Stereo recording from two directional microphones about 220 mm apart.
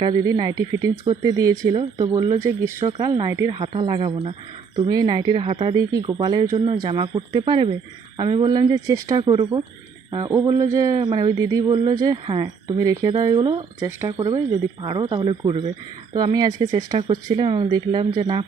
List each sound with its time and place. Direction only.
0.3 s speech: 20° right (ahead or behind)